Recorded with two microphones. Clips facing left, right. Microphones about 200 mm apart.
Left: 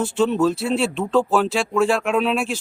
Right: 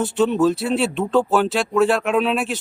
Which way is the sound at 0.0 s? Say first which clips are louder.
Right 1 dB; 5° right (ahead or behind).